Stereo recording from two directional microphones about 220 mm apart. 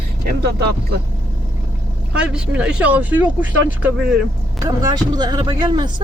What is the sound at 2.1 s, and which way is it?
A woman's voice, 5° right (ahead or behind).